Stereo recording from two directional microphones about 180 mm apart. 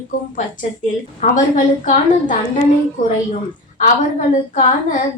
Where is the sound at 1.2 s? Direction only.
40° left (ahead or behind).